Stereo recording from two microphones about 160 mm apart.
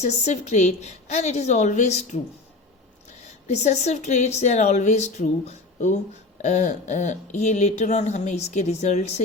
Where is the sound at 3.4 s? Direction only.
45° left (ahead or behind).